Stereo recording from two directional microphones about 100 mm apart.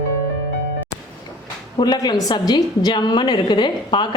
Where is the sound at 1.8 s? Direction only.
45° left (ahead or behind).